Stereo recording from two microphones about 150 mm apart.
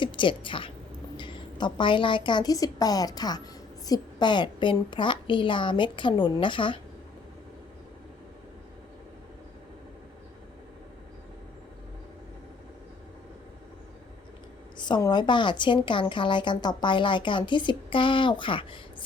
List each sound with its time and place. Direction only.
0.0 s a woman's voice: 35° left (ahead or behind)
14.8 s a woman's voice: 30° left (ahead or behind)